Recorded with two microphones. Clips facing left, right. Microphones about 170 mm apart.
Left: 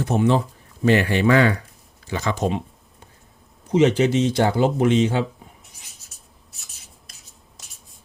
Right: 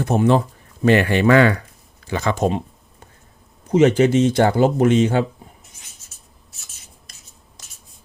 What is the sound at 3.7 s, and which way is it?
Speech, 50° right (ahead or behind).